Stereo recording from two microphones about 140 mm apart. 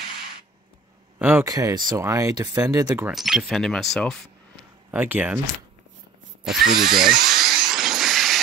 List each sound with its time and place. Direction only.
1.4 s speech: 25° right (ahead or behind)
3.1 s speech: centre (ahead or behind)
4.9 s speech: 10° right (ahead or behind)
6.4 s speech: 5° right (ahead or behind)
7.2 s a sound: centre (ahead or behind)